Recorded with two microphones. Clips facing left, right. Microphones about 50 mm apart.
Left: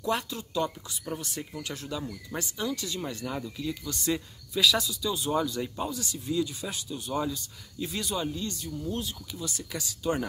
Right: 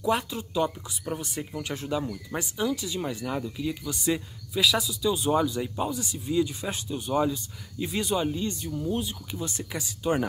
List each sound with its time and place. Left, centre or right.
0.0 s speech: centre
2.0 s speech: centre
5.1 s speech: centre
9.4 s speech: right